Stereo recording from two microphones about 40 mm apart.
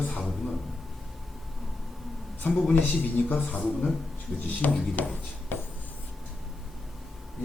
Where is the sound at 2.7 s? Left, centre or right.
Left.